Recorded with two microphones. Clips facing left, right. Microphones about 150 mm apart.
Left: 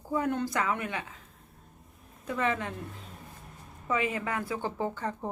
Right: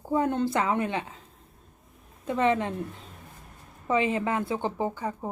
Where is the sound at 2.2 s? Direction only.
25° right (ahead or behind).